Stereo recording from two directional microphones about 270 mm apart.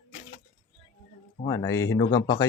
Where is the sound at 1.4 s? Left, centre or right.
Centre.